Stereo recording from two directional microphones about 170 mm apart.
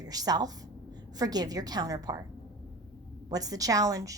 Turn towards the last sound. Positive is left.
turn(degrees=-20)  # may be behind; listen again after turning